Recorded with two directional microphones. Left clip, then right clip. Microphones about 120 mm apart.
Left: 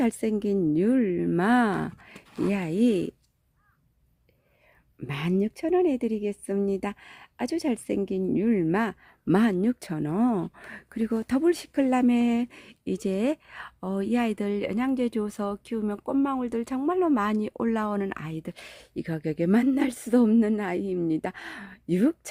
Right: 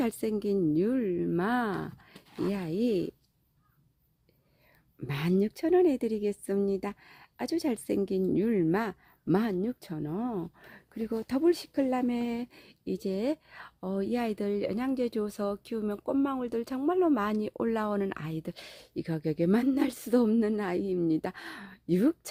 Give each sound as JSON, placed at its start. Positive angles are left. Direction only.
{"t": 0.0, "sound": "a woman's voice", "side_deg": 25}
{"t": 2.1, "sound": "speech", "side_deg": 25}
{"t": 4.9, "sound": "speech", "side_deg": 15}
{"t": 9.2, "sound": "speech", "side_deg": 40}
{"t": 11.1, "sound": "speech", "side_deg": 25}
{"t": 11.9, "sound": "speech", "side_deg": 40}